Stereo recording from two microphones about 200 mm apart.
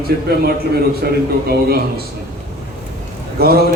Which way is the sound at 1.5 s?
50° right (ahead or behind).